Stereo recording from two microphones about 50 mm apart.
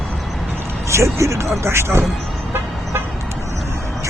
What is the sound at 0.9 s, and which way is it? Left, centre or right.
Speech, right.